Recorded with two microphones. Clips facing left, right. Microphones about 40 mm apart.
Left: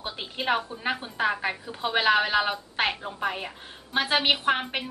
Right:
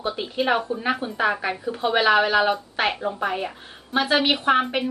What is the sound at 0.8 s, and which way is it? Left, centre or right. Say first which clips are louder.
A woman's voice: right 3 dB; centre.